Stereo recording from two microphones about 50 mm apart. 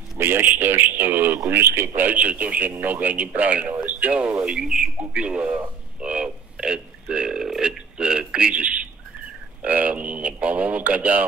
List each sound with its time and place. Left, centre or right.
0.2 s a man's voice: right
2.0 s speech: right
3.8 s radio: right
4.2 s speech: centre
5.1 s speech: right